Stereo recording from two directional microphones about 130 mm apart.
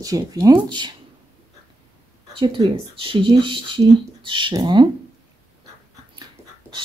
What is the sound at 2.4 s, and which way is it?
Speech, 40° right (ahead or behind).